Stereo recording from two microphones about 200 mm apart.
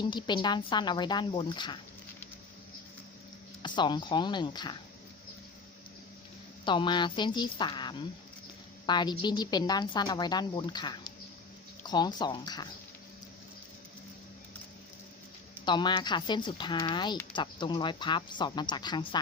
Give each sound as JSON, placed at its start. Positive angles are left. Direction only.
{"t": 0.0, "sound": "speech", "side_deg": 20}
{"t": 3.6, "sound": "speech", "side_deg": 20}
{"t": 6.7, "sound": "speech", "side_deg": 25}
{"t": 15.6, "sound": "speech", "side_deg": 20}